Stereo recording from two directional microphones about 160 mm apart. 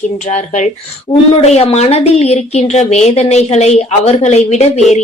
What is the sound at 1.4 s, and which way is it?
A woman's voice, 40° left (ahead or behind).